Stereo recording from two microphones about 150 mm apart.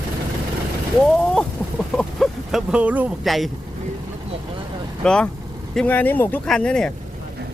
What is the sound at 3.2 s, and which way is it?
Speech, centre (ahead or behind).